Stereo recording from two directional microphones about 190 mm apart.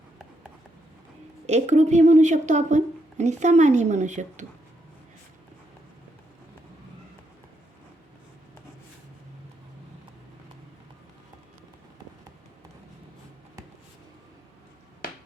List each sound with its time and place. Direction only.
1.5 s a woman's voice: 35° right (ahead or behind)